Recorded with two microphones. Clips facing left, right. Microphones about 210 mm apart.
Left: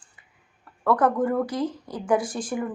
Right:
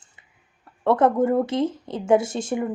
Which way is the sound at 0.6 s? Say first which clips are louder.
Right 3 dB; 25° right (ahead or behind).